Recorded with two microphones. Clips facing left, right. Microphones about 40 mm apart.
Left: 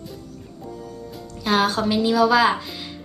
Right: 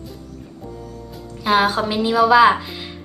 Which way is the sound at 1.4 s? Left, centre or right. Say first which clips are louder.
Right 3 dB; centre.